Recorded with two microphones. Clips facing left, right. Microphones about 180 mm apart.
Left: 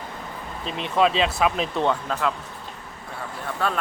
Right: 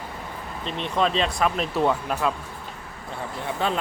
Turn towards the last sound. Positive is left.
turn(degrees=-20)  # may be behind; listen again after turning